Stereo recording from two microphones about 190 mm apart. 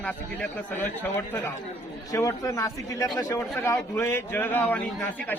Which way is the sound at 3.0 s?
5° left (ahead or behind).